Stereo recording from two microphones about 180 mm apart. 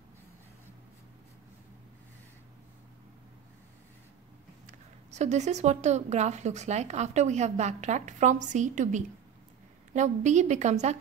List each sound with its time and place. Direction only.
4.6 s speech: 40° right (ahead or behind)